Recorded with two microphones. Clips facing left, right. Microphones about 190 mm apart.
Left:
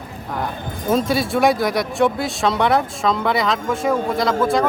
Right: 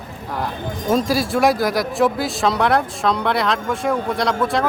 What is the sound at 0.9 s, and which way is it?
Speech, centre (ahead or behind).